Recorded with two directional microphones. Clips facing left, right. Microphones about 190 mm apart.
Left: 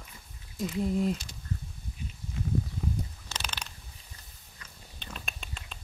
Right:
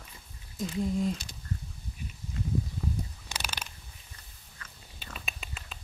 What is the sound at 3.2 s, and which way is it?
Mechanisms, 10° right (ahead or behind).